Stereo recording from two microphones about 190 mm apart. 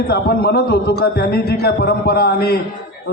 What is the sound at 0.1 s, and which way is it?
Speech, 55° left (ahead or behind).